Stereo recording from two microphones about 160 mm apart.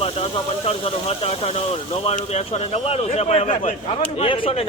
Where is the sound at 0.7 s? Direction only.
40° left (ahead or behind).